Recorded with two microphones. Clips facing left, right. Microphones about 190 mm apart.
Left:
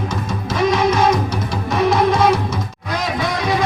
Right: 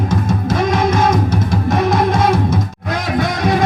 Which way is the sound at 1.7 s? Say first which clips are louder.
Left 1 dB; 50° right (ahead or behind).